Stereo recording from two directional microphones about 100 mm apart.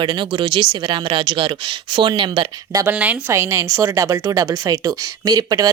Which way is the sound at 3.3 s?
25° right (ahead or behind).